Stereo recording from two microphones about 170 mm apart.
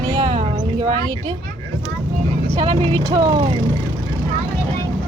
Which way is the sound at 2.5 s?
35° right (ahead or behind).